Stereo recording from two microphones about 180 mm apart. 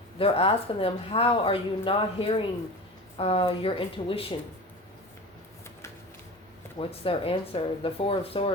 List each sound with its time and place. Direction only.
0.2 s speech: 30° left (ahead or behind)
6.7 s speech: 30° left (ahead or behind)